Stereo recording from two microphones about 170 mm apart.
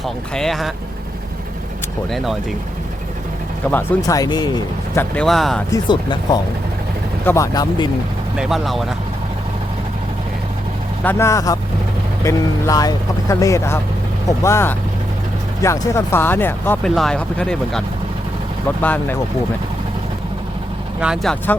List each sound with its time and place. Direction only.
0.0 s speech: centre (ahead or behind)
2.0 s speech: centre (ahead or behind)
3.7 s speech: 10° left (ahead or behind)
5.1 s speech: centre (ahead or behind)
5.7 s speech: 25° left (ahead or behind)
8.4 s speech: centre (ahead or behind)
11.0 s speech: 15° left (ahead or behind)
21.0 s speech: 5° right (ahead or behind)